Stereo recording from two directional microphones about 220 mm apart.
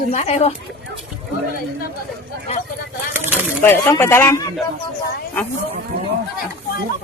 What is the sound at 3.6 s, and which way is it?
Speech, 10° left (ahead or behind).